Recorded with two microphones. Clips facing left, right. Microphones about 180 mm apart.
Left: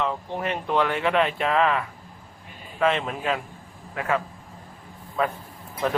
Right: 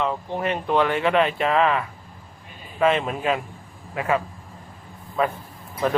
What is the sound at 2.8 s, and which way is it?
Speech, 10° right (ahead or behind).